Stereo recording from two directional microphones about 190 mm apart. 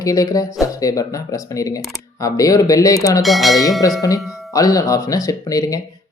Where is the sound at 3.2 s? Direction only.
Centre (ahead or behind).